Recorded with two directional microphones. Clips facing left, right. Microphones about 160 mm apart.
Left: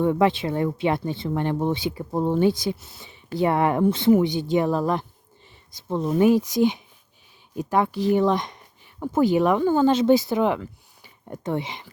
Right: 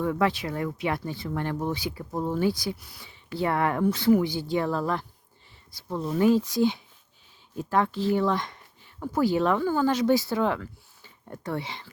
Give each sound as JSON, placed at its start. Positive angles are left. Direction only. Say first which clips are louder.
{"t": 0.0, "sound": "speech", "louder": "left 5 dB", "side_deg": 25}